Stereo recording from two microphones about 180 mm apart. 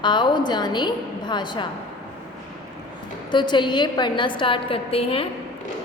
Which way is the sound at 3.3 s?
25° left (ahead or behind).